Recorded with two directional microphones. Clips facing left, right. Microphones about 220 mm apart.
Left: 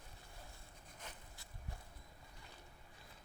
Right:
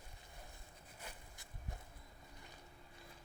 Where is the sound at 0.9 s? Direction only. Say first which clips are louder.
Right 1 dB; 10° right (ahead or behind).